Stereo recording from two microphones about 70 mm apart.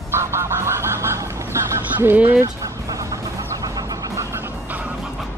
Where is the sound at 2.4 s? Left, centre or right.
Right.